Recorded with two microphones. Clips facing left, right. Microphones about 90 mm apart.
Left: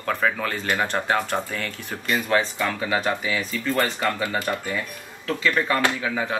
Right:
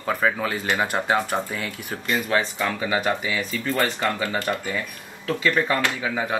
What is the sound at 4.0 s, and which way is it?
Speech, 5° left (ahead or behind).